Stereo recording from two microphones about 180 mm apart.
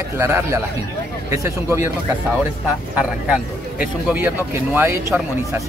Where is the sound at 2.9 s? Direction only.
5° right (ahead or behind).